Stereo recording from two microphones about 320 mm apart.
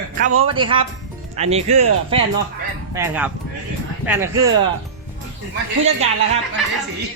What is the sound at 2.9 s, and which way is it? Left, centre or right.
Speech, centre.